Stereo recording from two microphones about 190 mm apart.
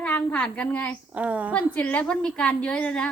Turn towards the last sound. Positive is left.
turn(degrees=5)  # may be behind; listen again after turning